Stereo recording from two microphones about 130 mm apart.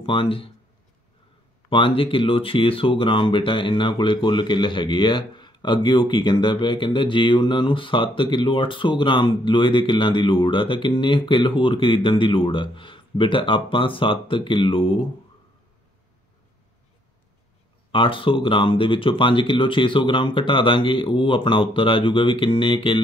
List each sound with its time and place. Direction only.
0.0 s speech: 45° left (ahead or behind)
1.7 s speech: 45° left (ahead or behind)
17.9 s speech: 40° left (ahead or behind)